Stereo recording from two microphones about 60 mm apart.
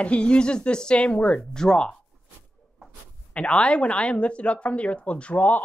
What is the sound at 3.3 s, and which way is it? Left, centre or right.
Speech, left.